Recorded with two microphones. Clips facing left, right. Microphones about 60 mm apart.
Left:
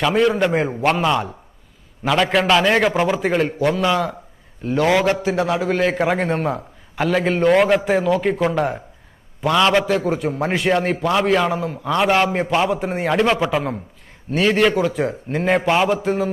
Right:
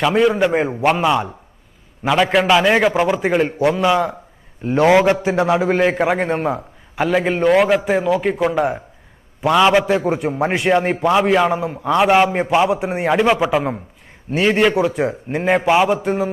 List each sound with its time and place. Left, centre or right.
0.0 s a man's voice: centre
5.9 s a man's voice: centre